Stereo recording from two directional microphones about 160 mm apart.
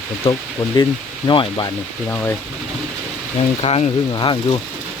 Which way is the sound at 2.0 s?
15° left (ahead or behind).